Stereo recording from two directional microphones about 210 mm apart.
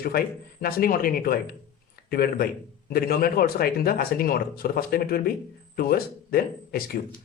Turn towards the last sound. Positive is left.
turn(degrees=45)  # may be behind; listen again after turning